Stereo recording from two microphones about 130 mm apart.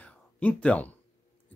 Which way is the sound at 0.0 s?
10° left (ahead or behind).